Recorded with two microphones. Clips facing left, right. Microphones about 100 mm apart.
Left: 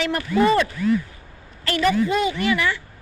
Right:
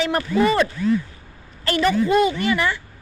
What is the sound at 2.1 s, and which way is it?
Speech, 45° right (ahead or behind).